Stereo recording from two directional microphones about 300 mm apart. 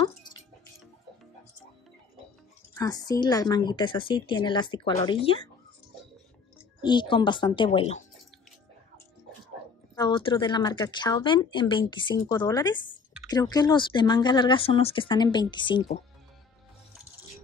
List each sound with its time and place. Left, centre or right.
2.7 s speech: centre
6.8 s speech: centre
9.9 s speech: centre